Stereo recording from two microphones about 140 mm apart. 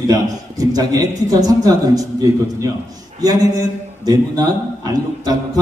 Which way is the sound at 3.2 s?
25° right (ahead or behind).